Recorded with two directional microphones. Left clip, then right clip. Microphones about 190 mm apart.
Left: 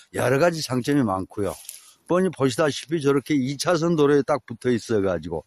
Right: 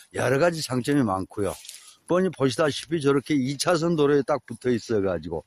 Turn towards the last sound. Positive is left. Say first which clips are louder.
# left 2 dB
turn(degrees=15)  # may be behind; listen again after turning